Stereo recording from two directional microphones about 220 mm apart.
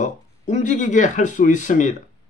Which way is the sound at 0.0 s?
35° left (ahead or behind).